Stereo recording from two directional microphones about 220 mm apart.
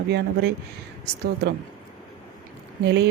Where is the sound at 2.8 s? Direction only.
50° right (ahead or behind).